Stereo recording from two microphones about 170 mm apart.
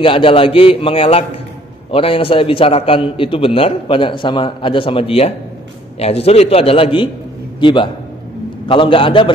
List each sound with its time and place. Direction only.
0.0 s a man's voice: 30° left (ahead or behind)